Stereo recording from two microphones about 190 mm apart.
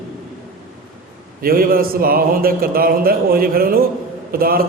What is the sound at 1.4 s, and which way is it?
A man's voice, 50° right (ahead or behind).